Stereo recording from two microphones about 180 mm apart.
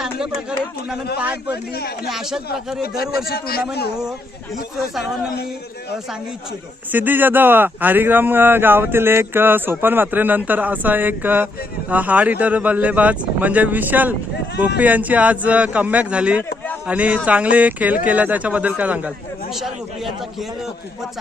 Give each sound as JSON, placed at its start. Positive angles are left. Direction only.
{"t": 2.0, "sound": "a man's voice", "side_deg": 0}
{"t": 2.8, "sound": "a man's voice", "side_deg": 55}
{"t": 6.9, "sound": "a man's voice", "side_deg": -10}